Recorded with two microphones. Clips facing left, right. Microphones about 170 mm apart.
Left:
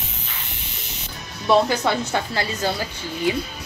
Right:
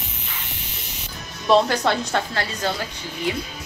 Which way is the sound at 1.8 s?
10° left (ahead or behind).